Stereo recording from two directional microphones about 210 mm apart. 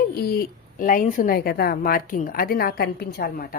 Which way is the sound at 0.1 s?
45° left (ahead or behind).